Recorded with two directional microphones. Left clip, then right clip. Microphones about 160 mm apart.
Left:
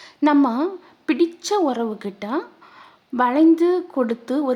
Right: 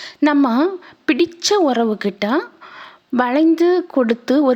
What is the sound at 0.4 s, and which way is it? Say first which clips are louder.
Speech: right 5 dB; 25° right (ahead or behind).